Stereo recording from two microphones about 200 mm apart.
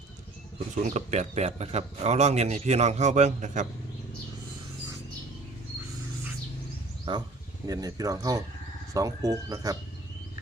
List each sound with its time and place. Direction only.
0.8 s a man's voice: 35° right (ahead or behind)
7.1 s speech: 25° right (ahead or behind)